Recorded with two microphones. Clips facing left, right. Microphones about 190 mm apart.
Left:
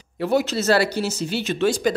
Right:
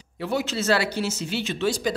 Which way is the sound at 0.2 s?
45° left (ahead or behind).